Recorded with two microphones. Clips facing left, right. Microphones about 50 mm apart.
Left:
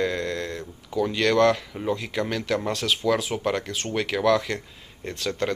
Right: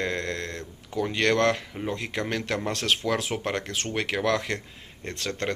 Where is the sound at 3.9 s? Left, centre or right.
Right.